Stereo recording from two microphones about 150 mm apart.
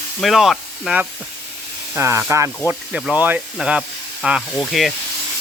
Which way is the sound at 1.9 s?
15° right (ahead or behind).